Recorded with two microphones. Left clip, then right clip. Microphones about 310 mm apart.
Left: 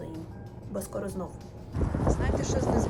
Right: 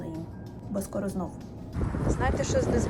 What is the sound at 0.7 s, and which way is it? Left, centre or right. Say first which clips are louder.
Speech: right 2 dB; centre.